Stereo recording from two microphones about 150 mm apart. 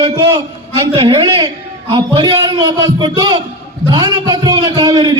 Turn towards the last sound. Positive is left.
turn(degrees=-30)  # may be behind; listen again after turning